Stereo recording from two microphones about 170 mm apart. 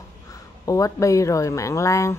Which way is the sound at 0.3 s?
20° left (ahead or behind).